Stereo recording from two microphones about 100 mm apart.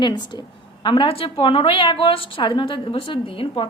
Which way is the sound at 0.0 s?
50° left (ahead or behind).